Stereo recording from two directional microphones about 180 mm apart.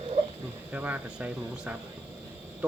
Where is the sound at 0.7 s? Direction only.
10° right (ahead or behind).